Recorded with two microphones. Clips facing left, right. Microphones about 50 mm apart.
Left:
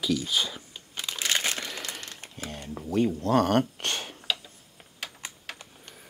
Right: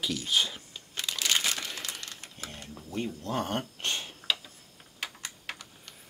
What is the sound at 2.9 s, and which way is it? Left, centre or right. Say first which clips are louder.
Speech: left 10 dB; left.